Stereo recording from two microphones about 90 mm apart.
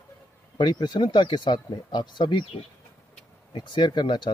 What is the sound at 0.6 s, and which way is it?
Speech, 60° left (ahead or behind).